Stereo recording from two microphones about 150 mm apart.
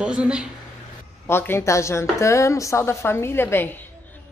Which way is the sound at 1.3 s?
15° left (ahead or behind).